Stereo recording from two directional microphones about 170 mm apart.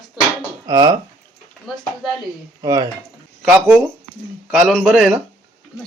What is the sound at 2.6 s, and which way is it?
Speech, 25° right (ahead or behind).